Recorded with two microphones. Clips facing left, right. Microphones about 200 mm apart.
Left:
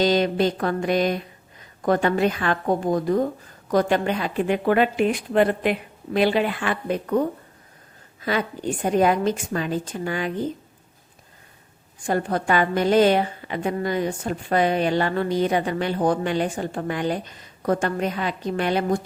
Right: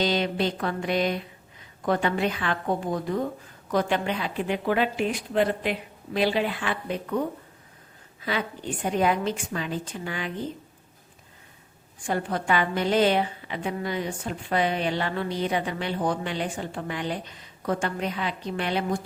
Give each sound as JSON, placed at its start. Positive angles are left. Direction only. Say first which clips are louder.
{"t": 0.0, "sound": "a woman's voice", "louder": "left 5 dB", "side_deg": 45}
{"t": 8.2, "sound": "a woman's voice", "louder": "left 5 dB", "side_deg": 45}
{"t": 12.0, "sound": "a woman's voice", "louder": "left 4 dB", "side_deg": 45}